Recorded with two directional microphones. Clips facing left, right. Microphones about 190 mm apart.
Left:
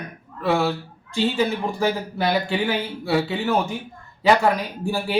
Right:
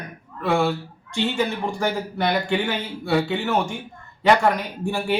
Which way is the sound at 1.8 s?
5° left (ahead or behind).